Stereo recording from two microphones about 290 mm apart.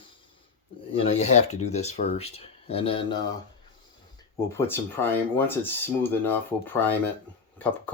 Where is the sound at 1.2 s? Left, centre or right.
Left.